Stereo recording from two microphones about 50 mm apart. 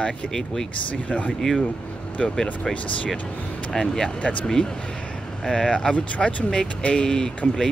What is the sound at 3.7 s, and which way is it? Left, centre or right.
Speech, centre.